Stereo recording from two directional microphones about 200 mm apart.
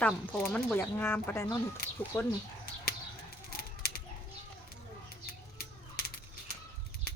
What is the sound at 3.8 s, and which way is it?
Bird, 50° left (ahead or behind).